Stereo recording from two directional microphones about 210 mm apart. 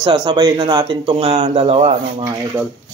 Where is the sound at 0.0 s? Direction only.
25° right (ahead or behind).